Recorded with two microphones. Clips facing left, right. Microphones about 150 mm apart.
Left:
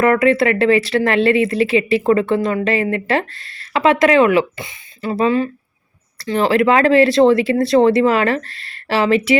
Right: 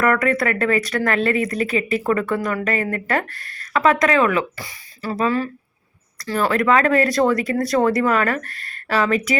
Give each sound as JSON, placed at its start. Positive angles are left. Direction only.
{"t": 0.0, "sound": "speech", "side_deg": 25}
{"t": 3.3, "sound": "speech", "side_deg": -50}
{"t": 3.6, "sound": "speech", "side_deg": 25}
{"t": 8.4, "sound": "speech", "side_deg": -50}
{"t": 8.9, "sound": "speech", "side_deg": 30}